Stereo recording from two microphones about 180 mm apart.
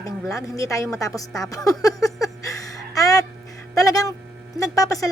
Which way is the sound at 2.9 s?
20° left (ahead or behind).